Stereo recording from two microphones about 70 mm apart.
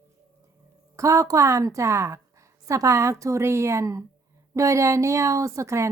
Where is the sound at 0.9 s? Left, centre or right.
Right.